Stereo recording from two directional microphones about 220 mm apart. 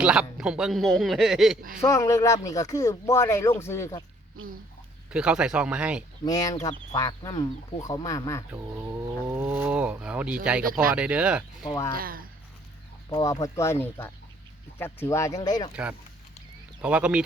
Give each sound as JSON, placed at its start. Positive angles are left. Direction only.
{"t": 0.0, "sound": "a man's voice", "side_deg": -5}
{"t": 1.8, "sound": "speech", "side_deg": 15}
{"t": 5.1, "sound": "a man's voice", "side_deg": -5}
{"t": 6.2, "sound": "speech", "side_deg": 15}
{"t": 8.5, "sound": "speech", "side_deg": -10}
{"t": 10.6, "sound": "speech", "side_deg": -40}
{"t": 10.9, "sound": "a man's voice", "side_deg": -5}
{"t": 11.7, "sound": "speech", "side_deg": 15}
{"t": 11.9, "sound": "speech", "side_deg": -40}
{"t": 13.1, "sound": "speech", "side_deg": 20}
{"t": 15.7, "sound": "a man's voice", "side_deg": -5}